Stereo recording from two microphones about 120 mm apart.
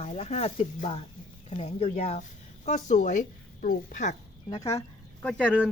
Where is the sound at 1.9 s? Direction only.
70° left (ahead or behind); by 4.1 s 90° left.